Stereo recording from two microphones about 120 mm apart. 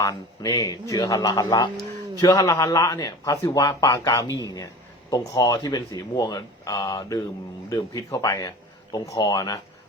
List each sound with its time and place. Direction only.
0.0 s speech: 30° left (ahead or behind)